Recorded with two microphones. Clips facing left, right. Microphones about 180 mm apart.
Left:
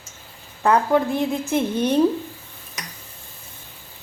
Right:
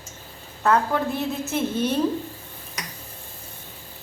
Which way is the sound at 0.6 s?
15° left (ahead or behind).